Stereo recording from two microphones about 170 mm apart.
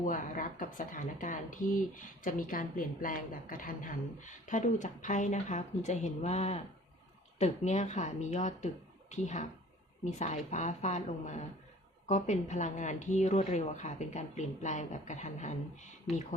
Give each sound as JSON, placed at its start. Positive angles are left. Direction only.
{"t": 0.0, "sound": "speech", "side_deg": 50}
{"t": 16.1, "sound": "speech", "side_deg": 0}